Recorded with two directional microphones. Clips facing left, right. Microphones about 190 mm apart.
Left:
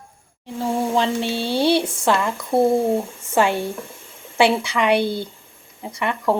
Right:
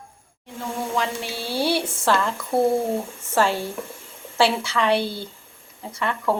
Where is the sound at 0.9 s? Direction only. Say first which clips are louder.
Left 6 dB; 25° left (ahead or behind).